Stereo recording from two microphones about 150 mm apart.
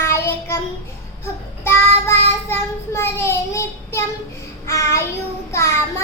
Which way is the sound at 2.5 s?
15° left (ahead or behind).